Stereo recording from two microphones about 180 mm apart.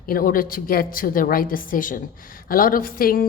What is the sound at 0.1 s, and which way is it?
A woman's voice, 50° left (ahead or behind).